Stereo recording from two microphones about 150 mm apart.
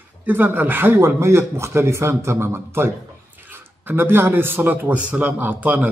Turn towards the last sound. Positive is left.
turn(degrees=-10)  # may be behind; listen again after turning